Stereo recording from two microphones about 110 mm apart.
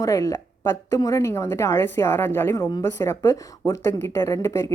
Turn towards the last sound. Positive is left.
turn(degrees=30)  # may be behind; listen again after turning